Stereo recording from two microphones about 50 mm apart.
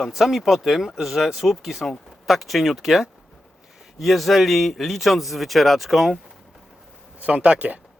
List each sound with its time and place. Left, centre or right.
0.0 s speech: centre
7.2 s speech: right